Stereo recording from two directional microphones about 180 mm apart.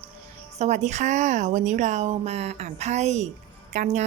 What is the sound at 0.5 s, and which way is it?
A woman's voice, 40° right (ahead or behind).